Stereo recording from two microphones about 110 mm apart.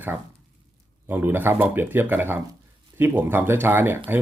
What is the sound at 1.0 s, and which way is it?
Speech, 20° right (ahead or behind).